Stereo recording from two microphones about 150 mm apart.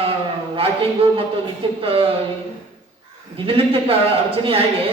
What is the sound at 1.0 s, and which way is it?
A woman's voice, 40° right (ahead or behind).